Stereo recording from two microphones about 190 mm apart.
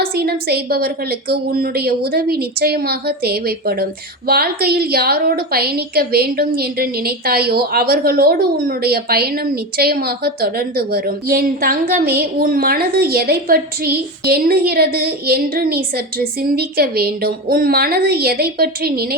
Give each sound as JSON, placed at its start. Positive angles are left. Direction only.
{"t": 0.0, "sound": "a woman's voice", "side_deg": -55}